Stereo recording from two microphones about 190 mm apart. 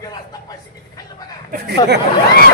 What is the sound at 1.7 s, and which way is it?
Speech, 60° right (ahead or behind).